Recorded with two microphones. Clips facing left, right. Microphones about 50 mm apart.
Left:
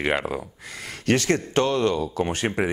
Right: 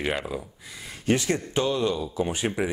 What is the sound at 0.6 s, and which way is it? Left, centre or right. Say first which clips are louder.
Speech: left 1 dB; left.